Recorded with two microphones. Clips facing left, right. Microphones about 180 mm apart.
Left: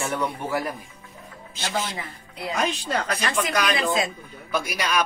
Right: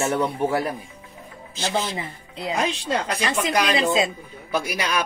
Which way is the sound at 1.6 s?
25° right (ahead or behind).